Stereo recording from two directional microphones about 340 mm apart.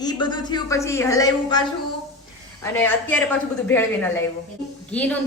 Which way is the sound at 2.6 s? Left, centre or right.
Centre.